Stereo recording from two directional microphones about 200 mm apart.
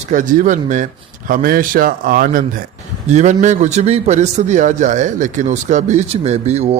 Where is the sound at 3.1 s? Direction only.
35° right (ahead or behind).